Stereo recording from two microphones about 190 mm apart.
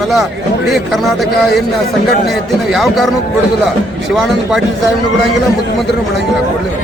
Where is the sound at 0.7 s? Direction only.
Centre (ahead or behind).